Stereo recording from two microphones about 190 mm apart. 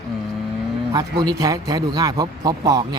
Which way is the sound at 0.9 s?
20° right (ahead or behind).